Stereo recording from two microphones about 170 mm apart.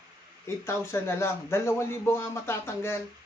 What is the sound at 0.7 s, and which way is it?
A man's voice, 15° left (ahead or behind).